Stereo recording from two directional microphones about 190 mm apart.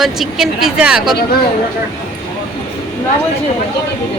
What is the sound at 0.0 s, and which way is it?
A woman's voice, centre (ahead or behind).